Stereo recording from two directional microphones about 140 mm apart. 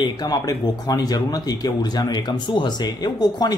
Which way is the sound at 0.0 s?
30° left (ahead or behind).